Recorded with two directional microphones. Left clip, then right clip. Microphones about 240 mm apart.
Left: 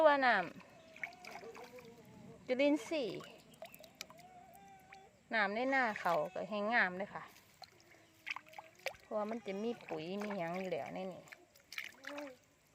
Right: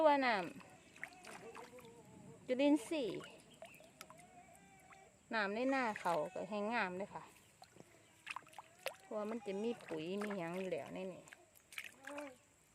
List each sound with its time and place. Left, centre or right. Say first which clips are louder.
0.0 s speech: left 3 dB; centre
1.2 s boat: left 3 dB; centre
2.5 s speech: left 2 dB; centre
3.6 s frog: left 4 dB; centre
4.0 s a sound: left 6 dB; centre
5.3 s speech: left 4 dB; centre
8.3 s speech: left 4 dB; centre
11.3 s a sound: left 5 dB; centre